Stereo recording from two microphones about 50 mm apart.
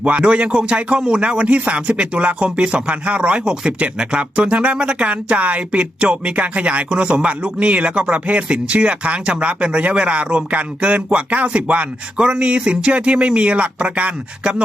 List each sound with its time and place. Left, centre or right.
0.0 s speech: right